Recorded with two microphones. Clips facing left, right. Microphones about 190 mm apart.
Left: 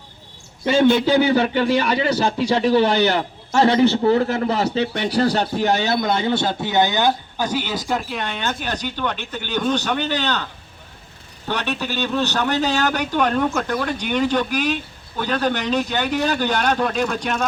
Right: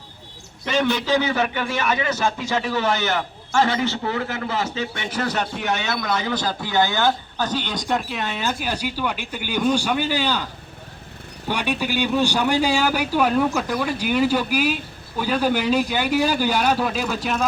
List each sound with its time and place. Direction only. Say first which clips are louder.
0.6 s a man's voice: left 7 dB; 25° left (ahead or behind); by 10.4 s 10° right (ahead or behind)
11.4 s a man's voice: right 1 dB; 10° right (ahead or behind)